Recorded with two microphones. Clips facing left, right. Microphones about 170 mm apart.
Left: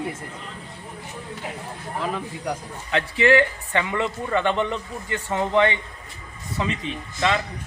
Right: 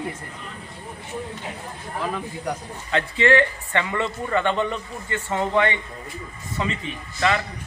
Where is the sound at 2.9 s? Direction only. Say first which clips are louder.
Left 1 dB; 10° left (ahead or behind).